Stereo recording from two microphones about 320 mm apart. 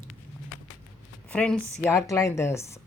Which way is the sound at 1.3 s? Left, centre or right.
Centre.